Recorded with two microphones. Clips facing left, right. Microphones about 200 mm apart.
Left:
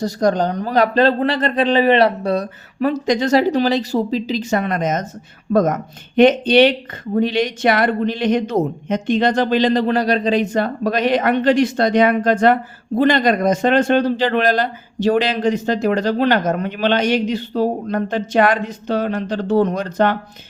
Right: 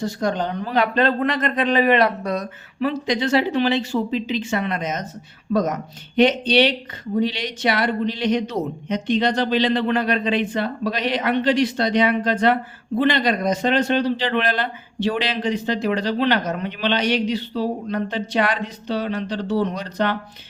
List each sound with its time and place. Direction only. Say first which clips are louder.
0.0 s speech: left 6 dB; 40° left (ahead or behind)